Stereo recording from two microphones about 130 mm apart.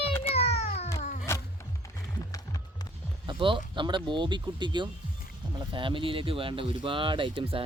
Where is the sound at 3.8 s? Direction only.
40° right (ahead or behind).